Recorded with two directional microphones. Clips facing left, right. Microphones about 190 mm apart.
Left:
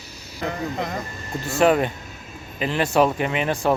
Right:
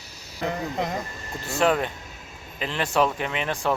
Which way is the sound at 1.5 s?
5° left (ahead or behind).